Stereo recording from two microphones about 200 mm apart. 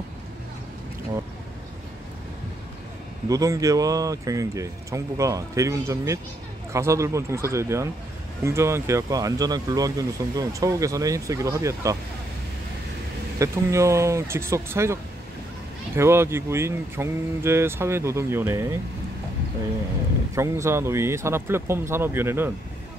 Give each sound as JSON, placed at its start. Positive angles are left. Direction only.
{"t": 3.3, "sound": "speech", "side_deg": -15}
{"t": 13.4, "sound": "speech", "side_deg": -15}
{"t": 16.0, "sound": "speech", "side_deg": -15}
{"t": 20.3, "sound": "speech", "side_deg": -15}